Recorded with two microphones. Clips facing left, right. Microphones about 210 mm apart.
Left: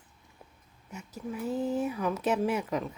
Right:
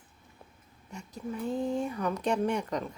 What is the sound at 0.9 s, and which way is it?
Speech, 5° left (ahead or behind).